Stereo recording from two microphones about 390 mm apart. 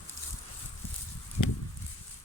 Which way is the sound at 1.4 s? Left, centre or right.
Left.